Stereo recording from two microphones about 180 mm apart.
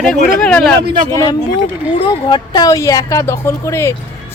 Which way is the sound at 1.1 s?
20° left (ahead or behind).